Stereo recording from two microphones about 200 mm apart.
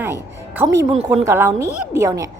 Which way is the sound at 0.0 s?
10° right (ahead or behind).